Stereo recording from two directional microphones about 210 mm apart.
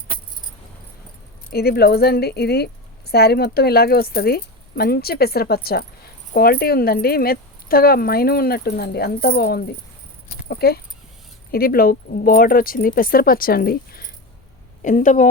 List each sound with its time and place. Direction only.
1.5 s speech: 50° left (ahead or behind)
10.2 s a sound: 45° left (ahead or behind)
11.5 s speech: 45° left (ahead or behind)